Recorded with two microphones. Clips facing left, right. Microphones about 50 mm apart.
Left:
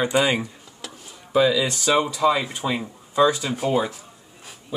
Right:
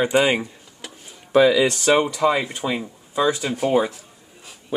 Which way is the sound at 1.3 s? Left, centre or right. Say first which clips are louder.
Right 4 dB; right.